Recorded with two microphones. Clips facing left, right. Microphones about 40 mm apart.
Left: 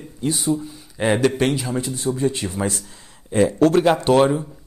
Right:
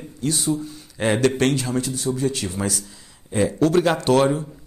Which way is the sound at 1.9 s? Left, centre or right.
Left.